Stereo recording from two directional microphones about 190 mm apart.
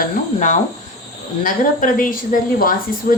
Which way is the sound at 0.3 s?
40° left (ahead or behind).